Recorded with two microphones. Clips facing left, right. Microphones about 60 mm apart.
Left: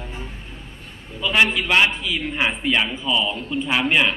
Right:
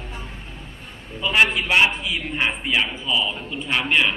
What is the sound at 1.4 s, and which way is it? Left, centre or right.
Speech, centre.